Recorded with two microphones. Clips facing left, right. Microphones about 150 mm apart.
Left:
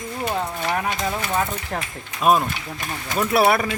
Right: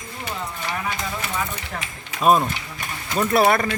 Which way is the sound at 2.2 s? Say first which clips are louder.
Right 1 dB; centre (ahead or behind).